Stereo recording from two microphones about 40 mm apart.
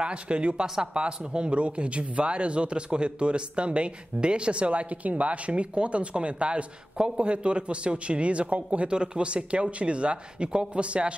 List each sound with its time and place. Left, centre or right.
0.0 s speech: right